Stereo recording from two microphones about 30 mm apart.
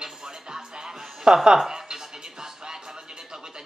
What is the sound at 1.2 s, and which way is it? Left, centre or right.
Speech, right.